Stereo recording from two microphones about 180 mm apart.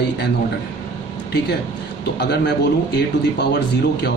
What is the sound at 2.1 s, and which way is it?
Speech, 70° left (ahead or behind).